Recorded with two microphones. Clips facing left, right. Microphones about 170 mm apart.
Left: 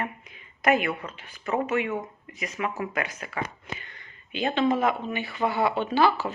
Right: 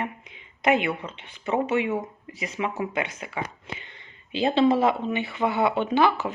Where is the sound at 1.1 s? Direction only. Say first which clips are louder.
Right 2 dB; 25° right (ahead or behind).